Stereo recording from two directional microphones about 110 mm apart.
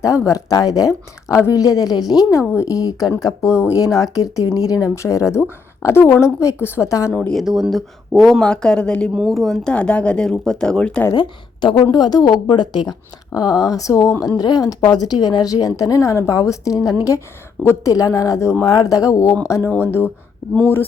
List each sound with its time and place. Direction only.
0.0 s speech: 30° left (ahead or behind)
7.1 s speech: 5° left (ahead or behind)
7.4 s speech: 5° right (ahead or behind)
9.1 s speech: centre (ahead or behind)
11.1 s speech: 45° left (ahead or behind); by 20.8 s 20° left (ahead or behind)